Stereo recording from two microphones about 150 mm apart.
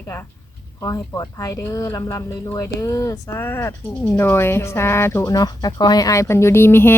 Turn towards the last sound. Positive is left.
turn(degrees=15)  # may be behind; listen again after turning